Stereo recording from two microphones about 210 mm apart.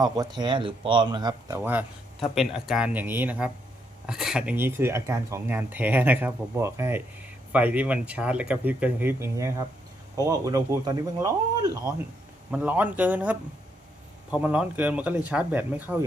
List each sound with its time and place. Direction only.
0.0 s speech: 20° right (ahead or behind)